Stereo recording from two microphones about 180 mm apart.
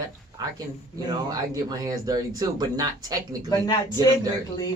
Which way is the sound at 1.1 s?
20° right (ahead or behind).